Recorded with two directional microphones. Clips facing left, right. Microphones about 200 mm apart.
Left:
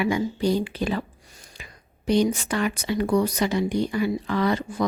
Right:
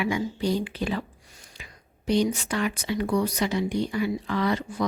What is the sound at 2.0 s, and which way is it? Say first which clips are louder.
Speech: left 2 dB; 50° left (ahead or behind).